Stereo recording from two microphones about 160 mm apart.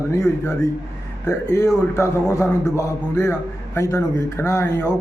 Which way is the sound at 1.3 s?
20° left (ahead or behind).